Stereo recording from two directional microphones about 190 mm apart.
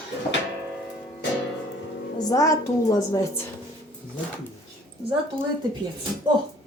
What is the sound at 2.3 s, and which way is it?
Speech, 15° left (ahead or behind).